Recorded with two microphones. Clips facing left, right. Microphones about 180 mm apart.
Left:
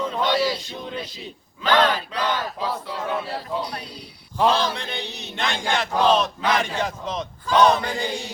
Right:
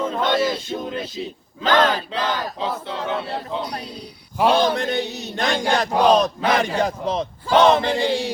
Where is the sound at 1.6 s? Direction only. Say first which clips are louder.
Right 2 dB; 40° right (ahead or behind).